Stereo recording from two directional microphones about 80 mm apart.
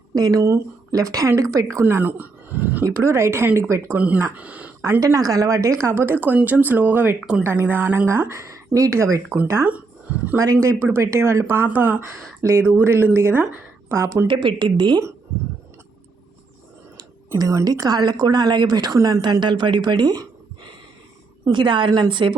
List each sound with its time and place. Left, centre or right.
0.1 s a woman's voice: right
1.8 s a sound: right
2.8 s speech: right
3.9 s speech: centre
4.8 s speech: right
5.8 s speech: right
12.4 s speech: right
14.3 s speech: right
17.3 s a woman's voice: right
18.9 s speech: right
19.4 s speech: right
21.4 s a woman's voice: right